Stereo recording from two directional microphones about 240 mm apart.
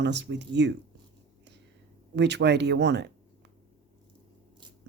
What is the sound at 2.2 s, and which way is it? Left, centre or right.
Speech, right.